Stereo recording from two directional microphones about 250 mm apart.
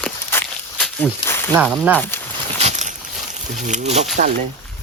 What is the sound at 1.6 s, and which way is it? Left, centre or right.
Speech, centre.